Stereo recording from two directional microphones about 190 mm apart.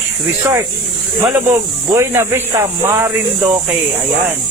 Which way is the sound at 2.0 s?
15° right (ahead or behind).